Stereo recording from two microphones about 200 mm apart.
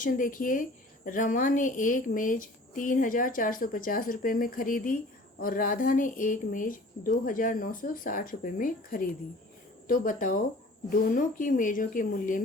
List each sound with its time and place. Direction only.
0.0 s a woman's voice: 40° left (ahead or behind)